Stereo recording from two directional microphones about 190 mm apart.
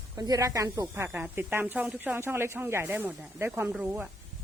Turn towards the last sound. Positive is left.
turn(degrees=-10)  # may be behind; listen again after turning